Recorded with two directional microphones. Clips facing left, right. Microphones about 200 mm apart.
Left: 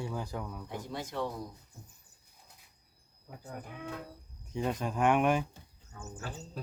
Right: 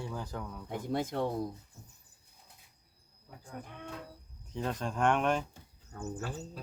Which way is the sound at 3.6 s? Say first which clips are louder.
Left 1 dB; 5° left (ahead or behind).